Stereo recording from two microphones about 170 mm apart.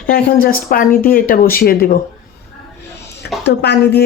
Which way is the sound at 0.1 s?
60° left (ahead or behind).